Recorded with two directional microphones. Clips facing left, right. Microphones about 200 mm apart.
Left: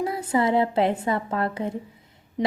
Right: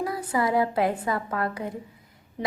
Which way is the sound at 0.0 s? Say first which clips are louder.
Left 3 dB; 25° left (ahead or behind).